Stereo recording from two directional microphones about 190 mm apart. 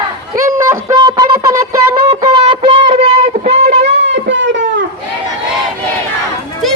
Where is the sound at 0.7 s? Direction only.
20° right (ahead or behind).